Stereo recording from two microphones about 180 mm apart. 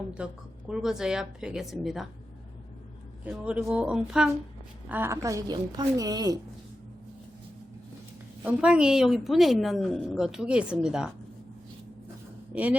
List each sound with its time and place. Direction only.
0.2 s a woman's voice: 5° right (ahead or behind)
3.2 s a woman's voice: 5° right (ahead or behind)
8.4 s a woman's voice: 5° right (ahead or behind)
12.5 s speech: 5° right (ahead or behind)